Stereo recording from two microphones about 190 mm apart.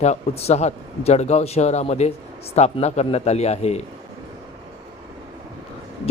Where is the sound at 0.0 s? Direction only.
35° left (ahead or behind).